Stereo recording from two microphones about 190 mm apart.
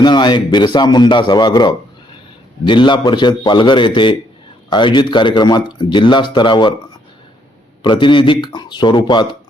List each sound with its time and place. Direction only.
0.0 s a man's voice: 25° left (ahead or behind)
7.9 s a man's voice: 25° left (ahead or behind)